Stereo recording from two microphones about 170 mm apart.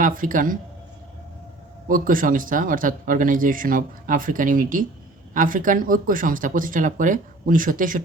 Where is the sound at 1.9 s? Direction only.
55° right (ahead or behind).